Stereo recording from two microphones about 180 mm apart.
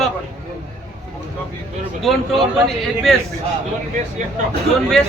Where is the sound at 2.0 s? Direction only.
Centre (ahead or behind).